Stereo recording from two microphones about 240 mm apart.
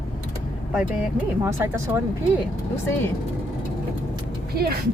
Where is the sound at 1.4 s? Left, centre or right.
Centre.